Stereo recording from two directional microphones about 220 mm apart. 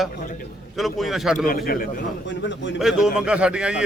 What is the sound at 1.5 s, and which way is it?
A man's voice, 45° left (ahead or behind).